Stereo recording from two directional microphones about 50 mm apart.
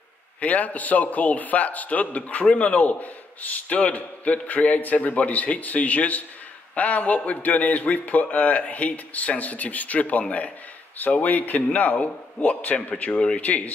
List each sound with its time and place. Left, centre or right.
0.4 s a man's voice: left